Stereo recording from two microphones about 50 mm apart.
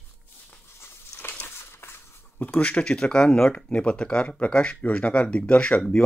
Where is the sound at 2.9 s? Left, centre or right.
Centre.